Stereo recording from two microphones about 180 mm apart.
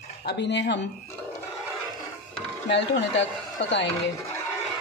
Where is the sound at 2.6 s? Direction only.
80° left.